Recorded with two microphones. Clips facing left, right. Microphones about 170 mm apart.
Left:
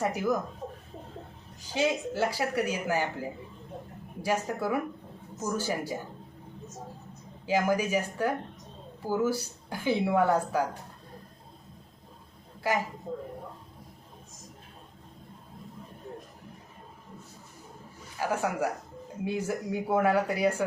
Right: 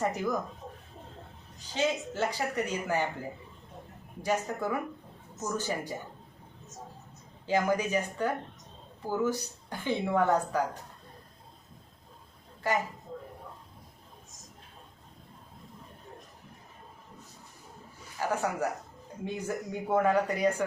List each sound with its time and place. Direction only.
0.0 s speech: 5° left (ahead or behind)
1.7 s speech: 10° left (ahead or behind)
4.2 s speech: 10° left (ahead or behind)
7.4 s speech: 10° left (ahead or behind)
12.7 s speech: 10° left (ahead or behind)
18.2 s speech: 10° left (ahead or behind)